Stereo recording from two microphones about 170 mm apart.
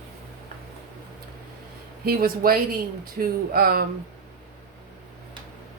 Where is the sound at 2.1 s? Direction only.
60° right (ahead or behind).